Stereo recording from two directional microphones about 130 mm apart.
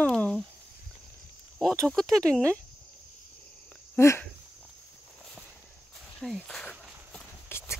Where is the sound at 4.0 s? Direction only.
20° left (ahead or behind).